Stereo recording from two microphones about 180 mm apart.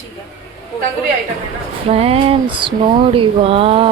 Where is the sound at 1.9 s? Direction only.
35° right (ahead or behind).